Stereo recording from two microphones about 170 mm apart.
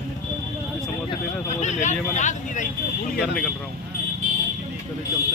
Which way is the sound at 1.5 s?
45° left (ahead or behind).